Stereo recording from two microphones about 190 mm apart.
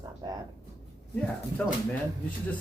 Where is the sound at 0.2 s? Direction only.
20° right (ahead or behind).